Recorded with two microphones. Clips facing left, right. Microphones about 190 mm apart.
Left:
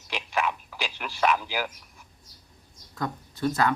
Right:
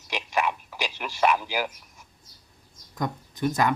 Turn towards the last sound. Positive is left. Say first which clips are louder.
# right 1 dB
turn(degrees=-15)  # may be behind; listen again after turning